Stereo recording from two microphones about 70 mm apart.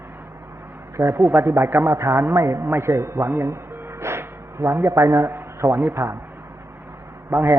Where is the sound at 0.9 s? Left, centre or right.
Right.